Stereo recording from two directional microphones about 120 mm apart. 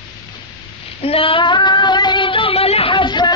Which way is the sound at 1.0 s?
50° left (ahead or behind).